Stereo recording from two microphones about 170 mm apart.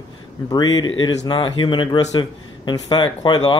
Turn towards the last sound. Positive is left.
turn(degrees=25)  # may be behind; listen again after turning